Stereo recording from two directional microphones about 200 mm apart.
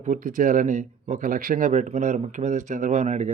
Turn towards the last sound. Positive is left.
turn(degrees=-35)  # may be behind; listen again after turning